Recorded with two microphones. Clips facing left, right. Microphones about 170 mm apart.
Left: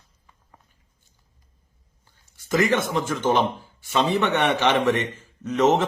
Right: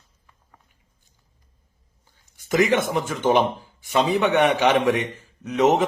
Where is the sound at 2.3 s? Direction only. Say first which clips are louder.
Right 2 dB; 15° right (ahead or behind).